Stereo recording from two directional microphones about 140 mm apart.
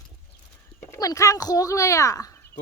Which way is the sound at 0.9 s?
25° left (ahead or behind).